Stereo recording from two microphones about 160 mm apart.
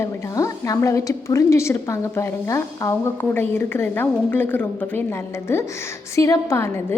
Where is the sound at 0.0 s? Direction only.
20° left (ahead or behind).